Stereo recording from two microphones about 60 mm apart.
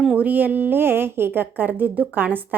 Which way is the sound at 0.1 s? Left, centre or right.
Right.